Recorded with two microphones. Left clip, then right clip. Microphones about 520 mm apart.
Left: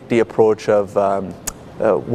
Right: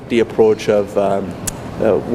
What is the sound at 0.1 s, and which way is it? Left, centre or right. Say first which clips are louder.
Speech: right 1 dB; left.